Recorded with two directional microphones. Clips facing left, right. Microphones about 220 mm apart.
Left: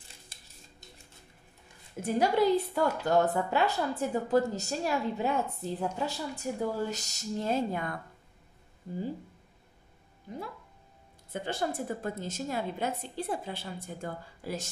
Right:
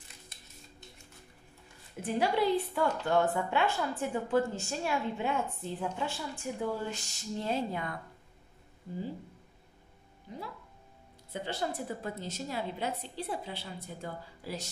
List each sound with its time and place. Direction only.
2.0 s a woman's voice: 40° left (ahead or behind)
11.4 s a woman's voice: 50° left (ahead or behind)